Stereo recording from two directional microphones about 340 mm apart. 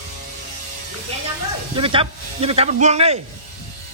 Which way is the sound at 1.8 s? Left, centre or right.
Centre.